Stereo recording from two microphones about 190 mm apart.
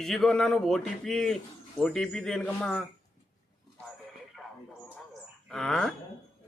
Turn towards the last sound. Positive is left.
turn(degrees=5)  # may be behind; listen again after turning